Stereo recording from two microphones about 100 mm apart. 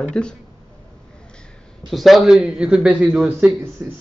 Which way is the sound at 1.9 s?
Centre (ahead or behind).